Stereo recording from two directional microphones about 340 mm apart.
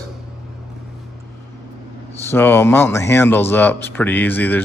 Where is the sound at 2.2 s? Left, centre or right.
Centre.